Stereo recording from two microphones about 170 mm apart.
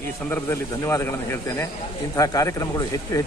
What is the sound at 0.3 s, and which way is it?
A man's voice, 15° left (ahead or behind).